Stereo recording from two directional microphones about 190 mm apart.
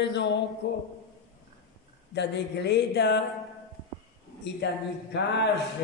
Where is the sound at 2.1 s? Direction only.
65° left (ahead or behind).